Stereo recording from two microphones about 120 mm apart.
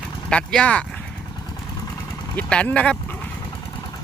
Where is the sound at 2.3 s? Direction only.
10° left (ahead or behind).